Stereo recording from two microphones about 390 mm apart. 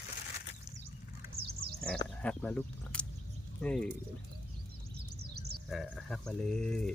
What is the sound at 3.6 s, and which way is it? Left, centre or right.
Speech, centre.